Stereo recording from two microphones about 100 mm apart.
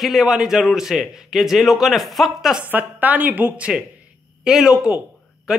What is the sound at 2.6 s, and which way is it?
A man's voice, 15° right (ahead or behind).